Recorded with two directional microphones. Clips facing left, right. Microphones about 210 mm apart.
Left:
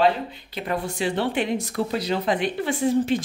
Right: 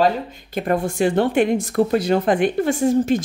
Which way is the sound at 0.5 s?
50° right (ahead or behind).